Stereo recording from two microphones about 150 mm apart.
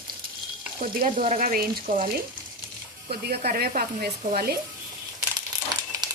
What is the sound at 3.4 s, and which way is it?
Speech, 85° right.